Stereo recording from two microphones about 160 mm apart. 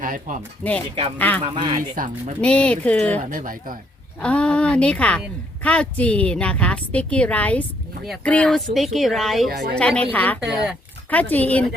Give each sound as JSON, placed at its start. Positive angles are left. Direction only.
{"t": 0.0, "sound": "speech", "side_deg": -55}
{"t": 0.6, "sound": "speech", "side_deg": 0}
{"t": 1.5, "sound": "speech", "side_deg": -25}
{"t": 2.0, "sound": "speech", "side_deg": -60}
{"t": 2.4, "sound": "a woman's voice", "side_deg": 5}
{"t": 3.2, "sound": "speech", "side_deg": -55}
{"t": 4.2, "sound": "a woman's voice", "side_deg": 5}
{"t": 9.5, "sound": "a woman's voice", "side_deg": -75}
{"t": 9.7, "sound": "a woman's voice", "side_deg": 5}
{"t": 10.4, "sound": "speech", "side_deg": -5}
{"t": 11.1, "sound": "a woman's voice", "side_deg": 10}